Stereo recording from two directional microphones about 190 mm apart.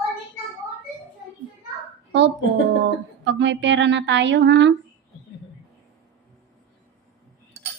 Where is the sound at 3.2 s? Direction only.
70° right (ahead or behind).